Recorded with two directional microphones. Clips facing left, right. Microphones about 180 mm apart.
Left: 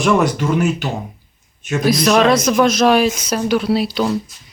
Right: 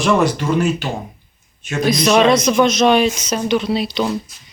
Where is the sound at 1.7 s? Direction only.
5° left (ahead or behind).